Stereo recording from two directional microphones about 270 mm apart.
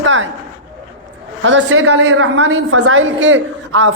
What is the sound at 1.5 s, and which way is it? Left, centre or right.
A woman's voice, right.